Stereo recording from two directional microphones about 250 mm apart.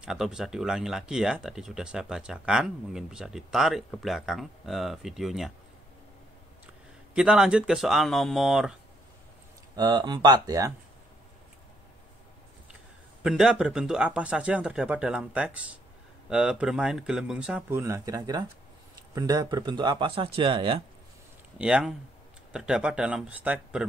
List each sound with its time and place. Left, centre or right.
0.0 s speech: centre
7.2 s speech: centre
9.8 s speech: centre
13.2 s speech: centre
21.5 s speech: centre